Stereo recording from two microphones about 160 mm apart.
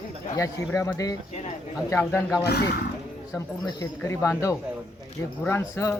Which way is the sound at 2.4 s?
85° left.